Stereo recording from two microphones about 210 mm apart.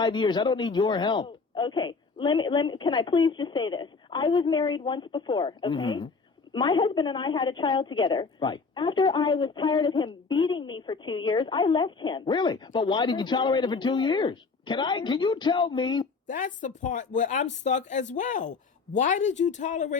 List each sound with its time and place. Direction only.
0.0 s a woman's voice: 20° left (ahead or behind)
16.2 s speech: 35° left (ahead or behind)